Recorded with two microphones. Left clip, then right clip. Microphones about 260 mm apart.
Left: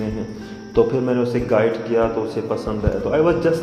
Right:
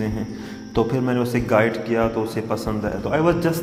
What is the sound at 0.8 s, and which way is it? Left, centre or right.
A man's voice, right.